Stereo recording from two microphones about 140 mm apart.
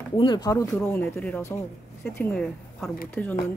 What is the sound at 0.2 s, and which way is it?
Speech, 30° left (ahead or behind).